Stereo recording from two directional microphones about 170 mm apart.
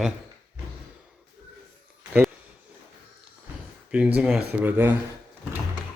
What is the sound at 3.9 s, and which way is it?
Speech, 10° right (ahead or behind).